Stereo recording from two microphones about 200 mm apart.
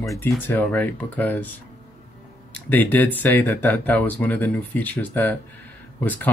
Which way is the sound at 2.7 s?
10° left (ahead or behind).